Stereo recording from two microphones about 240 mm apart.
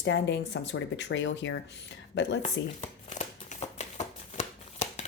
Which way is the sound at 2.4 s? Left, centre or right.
Left.